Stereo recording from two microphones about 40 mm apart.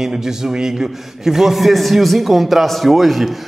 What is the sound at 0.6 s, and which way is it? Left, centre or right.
A man's voice, centre.